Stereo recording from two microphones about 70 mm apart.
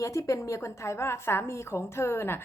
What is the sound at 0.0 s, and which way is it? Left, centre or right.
A woman's voice, left.